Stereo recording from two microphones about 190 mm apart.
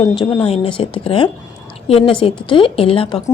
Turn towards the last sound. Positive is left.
turn(degrees=30)  # may be behind; listen again after turning